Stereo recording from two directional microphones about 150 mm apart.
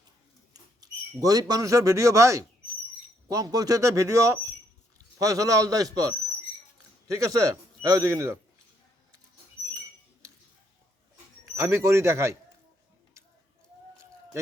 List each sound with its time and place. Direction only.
0.5 s a sound: 25° right (ahead or behind)
3.2 s a man's voice: 25° right (ahead or behind)
11.5 s a man's voice: 20° right (ahead or behind)